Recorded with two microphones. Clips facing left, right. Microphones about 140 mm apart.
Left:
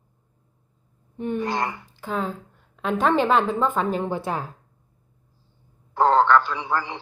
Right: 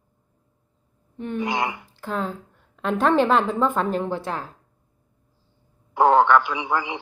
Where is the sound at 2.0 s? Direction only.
Centre (ahead or behind).